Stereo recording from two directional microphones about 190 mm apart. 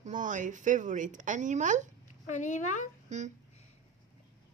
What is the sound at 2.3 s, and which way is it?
Speech, 40° left (ahead or behind).